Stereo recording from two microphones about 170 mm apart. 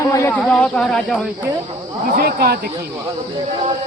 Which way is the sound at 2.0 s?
65° right (ahead or behind).